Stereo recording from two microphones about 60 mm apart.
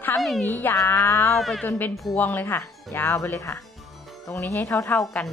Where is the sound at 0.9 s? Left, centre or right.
Left.